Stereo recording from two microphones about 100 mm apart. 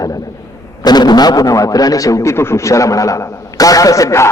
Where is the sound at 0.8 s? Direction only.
45° left (ahead or behind).